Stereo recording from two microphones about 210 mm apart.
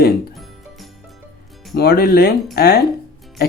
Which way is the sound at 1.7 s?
50° left (ahead or behind).